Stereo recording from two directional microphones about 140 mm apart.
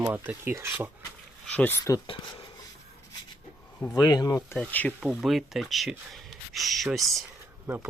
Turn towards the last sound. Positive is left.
turn(degrees=-15)  # may be behind; listen again after turning